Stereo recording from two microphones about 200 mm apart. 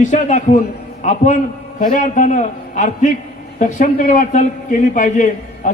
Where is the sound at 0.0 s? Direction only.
35° left (ahead or behind).